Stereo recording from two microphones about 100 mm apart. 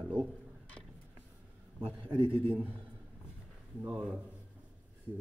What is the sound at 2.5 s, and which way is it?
Speech, 15° right (ahead or behind).